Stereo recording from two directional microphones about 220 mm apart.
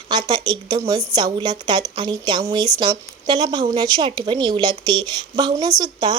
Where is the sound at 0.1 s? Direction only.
20° right (ahead or behind).